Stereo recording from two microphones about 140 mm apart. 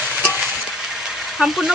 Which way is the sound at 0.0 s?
5° right (ahead or behind).